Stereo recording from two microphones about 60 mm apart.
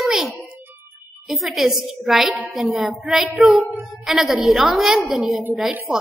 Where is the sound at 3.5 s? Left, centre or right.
Right.